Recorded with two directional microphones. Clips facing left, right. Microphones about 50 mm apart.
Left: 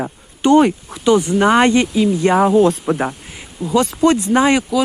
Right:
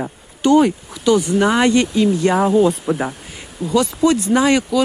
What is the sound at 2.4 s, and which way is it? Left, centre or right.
Speech, left.